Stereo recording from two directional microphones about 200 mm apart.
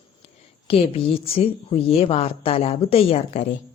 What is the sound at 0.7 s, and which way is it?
A woman's voice, 30° left (ahead or behind).